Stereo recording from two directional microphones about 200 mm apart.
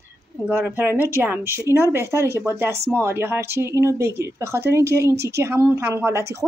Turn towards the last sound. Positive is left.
turn(degrees=-15)  # may be behind; listen again after turning